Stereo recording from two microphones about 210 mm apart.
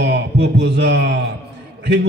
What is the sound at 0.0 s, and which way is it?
A man's voice, 55° right (ahead or behind).